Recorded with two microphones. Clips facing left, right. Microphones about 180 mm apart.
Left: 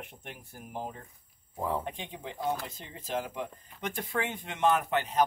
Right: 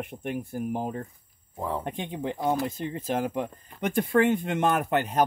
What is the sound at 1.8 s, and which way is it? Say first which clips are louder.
Speech: right 8 dB; 55° right (ahead or behind).